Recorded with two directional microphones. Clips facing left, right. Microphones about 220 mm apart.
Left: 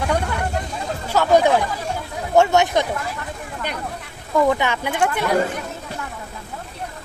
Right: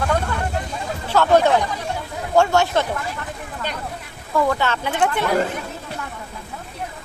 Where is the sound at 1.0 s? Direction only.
10° left (ahead or behind).